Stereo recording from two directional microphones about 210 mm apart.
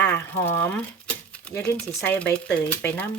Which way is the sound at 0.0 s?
10° left (ahead or behind).